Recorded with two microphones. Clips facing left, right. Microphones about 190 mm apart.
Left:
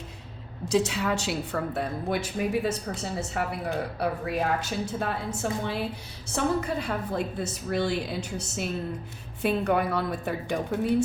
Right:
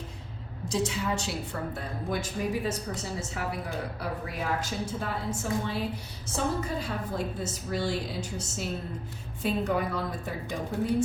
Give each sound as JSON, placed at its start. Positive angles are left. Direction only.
{"t": 0.7, "sound": "a woman's voice", "side_deg": 70}
{"t": 9.4, "sound": "a woman's voice", "side_deg": 65}